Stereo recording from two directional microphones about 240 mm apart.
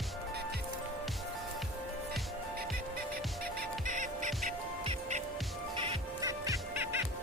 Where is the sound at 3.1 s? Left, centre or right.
Right; by 6.9 s centre.